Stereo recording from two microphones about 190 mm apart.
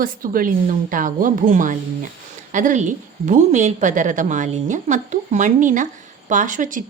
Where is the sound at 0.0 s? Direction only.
45° right (ahead or behind).